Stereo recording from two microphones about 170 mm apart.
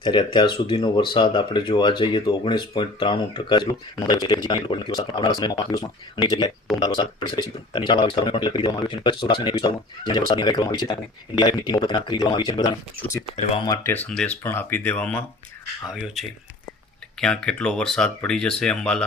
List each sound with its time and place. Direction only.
0.0 s speech: 25° left (ahead or behind)
13.2 s speech: 35° left (ahead or behind)
13.7 s speech: 10° left (ahead or behind)
17.2 s speech: 5° left (ahead or behind)